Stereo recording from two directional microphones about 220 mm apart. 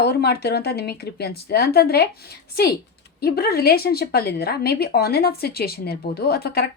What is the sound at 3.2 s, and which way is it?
A woman's voice, 45° left (ahead or behind).